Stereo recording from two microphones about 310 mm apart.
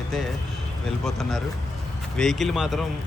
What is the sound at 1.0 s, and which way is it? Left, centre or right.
Speech, centre.